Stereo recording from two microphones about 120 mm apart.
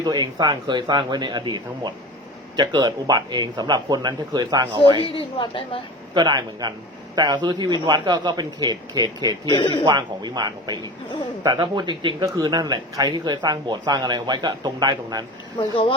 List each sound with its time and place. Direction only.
0.0 s speech: 35° right (ahead or behind)
5.1 s a woman's voice: 50° left (ahead or behind)
6.1 s speech: 35° right (ahead or behind)
9.5 s a man's voice: 35° left (ahead or behind)
9.8 s speech: 35° right (ahead or behind)
15.5 s a woman's voice: 45° left (ahead or behind)